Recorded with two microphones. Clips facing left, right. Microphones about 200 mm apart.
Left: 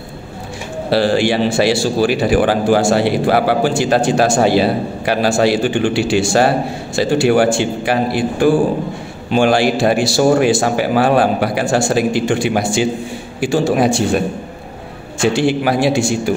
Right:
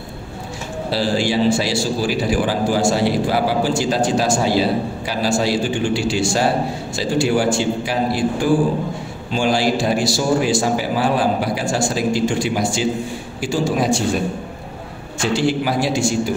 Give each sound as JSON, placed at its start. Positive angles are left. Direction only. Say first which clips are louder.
{"t": 0.8, "sound": "a man's voice", "louder": "left 6 dB", "side_deg": 65}
{"t": 15.3, "sound": "a man's voice", "louder": "left 1 dB", "side_deg": 65}